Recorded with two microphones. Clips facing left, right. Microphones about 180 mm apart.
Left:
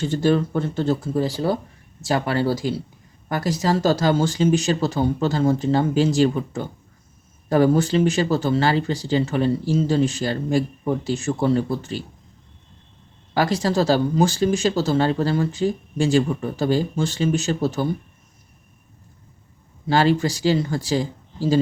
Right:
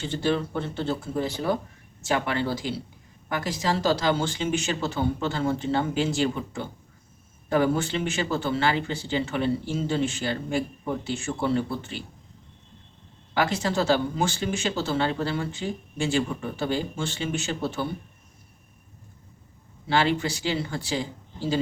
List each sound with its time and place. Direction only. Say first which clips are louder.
0.0 s speech: left 6 dB; 45° left (ahead or behind)
13.3 s speech: left 5 dB; 40° left (ahead or behind)
19.9 s speech: left 5 dB; 40° left (ahead or behind)